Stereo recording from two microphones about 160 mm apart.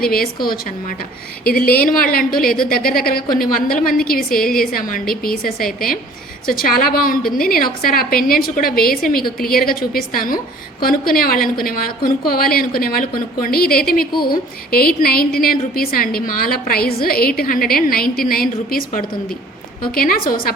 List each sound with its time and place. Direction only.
0.0 s a woman's voice: 70° left (ahead or behind)